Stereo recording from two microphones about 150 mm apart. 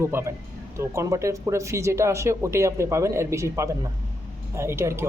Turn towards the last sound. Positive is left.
turn(degrees=-15)  # may be behind; listen again after turning